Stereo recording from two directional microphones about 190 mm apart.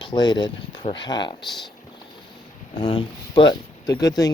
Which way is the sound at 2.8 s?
25° left (ahead or behind).